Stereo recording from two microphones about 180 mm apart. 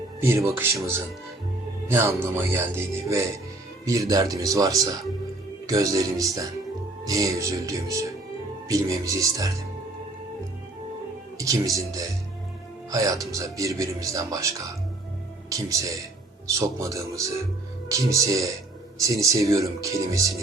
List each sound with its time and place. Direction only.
0.2 s speech: 15° right (ahead or behind)
1.9 s speech: 10° right (ahead or behind)
11.3 s speech: 20° right (ahead or behind)